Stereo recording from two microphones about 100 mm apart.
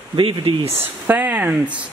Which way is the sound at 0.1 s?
65° right (ahead or behind).